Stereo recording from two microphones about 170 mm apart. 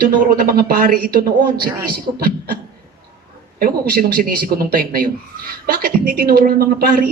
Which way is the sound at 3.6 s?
60° right (ahead or behind).